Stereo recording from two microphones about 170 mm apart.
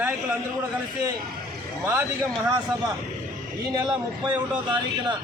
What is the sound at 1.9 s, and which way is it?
Speech, 15° right (ahead or behind).